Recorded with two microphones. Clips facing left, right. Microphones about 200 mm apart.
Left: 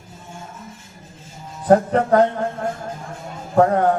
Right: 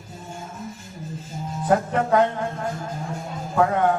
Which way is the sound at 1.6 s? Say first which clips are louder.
Left 6 dB; 40° left (ahead or behind).